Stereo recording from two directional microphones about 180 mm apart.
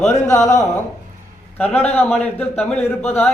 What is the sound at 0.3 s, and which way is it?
Speech, 40° left (ahead or behind).